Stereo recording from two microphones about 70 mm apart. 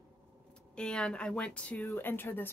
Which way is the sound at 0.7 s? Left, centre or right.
Centre.